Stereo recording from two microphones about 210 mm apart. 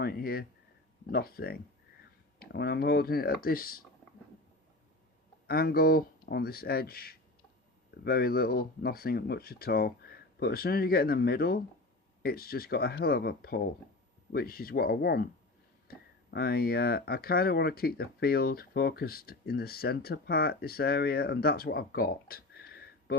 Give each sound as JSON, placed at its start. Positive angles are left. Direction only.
{"t": 0.0, "sound": "speech", "side_deg": 45}
{"t": 5.5, "sound": "speech", "side_deg": 45}